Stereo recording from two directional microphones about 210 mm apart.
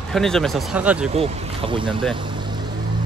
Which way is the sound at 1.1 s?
30° right (ahead or behind).